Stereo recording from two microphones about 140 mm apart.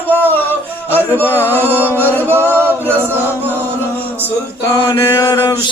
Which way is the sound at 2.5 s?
15° right (ahead or behind).